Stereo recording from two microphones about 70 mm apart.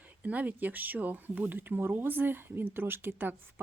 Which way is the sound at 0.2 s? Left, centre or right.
Right.